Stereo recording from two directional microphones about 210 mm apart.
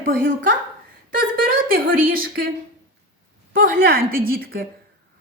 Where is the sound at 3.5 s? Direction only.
45° right (ahead or behind).